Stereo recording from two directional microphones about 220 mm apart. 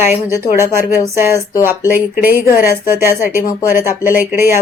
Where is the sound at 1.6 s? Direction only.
10° right (ahead or behind).